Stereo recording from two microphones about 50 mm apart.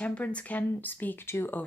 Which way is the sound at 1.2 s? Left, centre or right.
Left.